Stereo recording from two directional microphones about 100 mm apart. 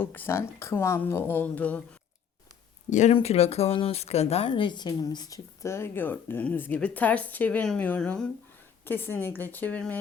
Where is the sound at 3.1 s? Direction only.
90° left.